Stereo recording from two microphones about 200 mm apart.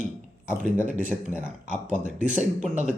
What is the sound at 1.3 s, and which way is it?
Speech, 5° right (ahead or behind).